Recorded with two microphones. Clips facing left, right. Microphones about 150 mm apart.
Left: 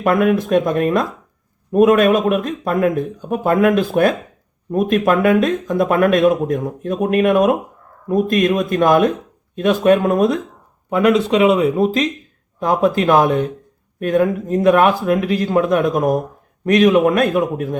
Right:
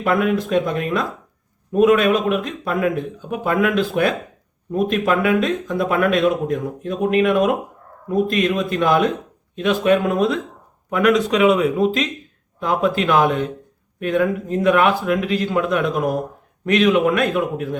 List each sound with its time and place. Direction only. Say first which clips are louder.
0.0 s speech: left 3 dB; 50° left (ahead or behind)
10.8 s speech: left 2 dB; 30° left (ahead or behind)